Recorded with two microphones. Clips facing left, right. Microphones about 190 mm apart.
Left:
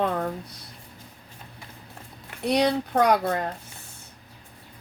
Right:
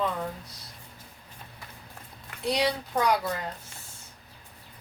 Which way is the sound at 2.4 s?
60° left (ahead or behind).